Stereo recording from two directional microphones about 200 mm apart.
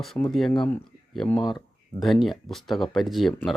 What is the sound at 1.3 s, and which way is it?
Speech, 20° left (ahead or behind).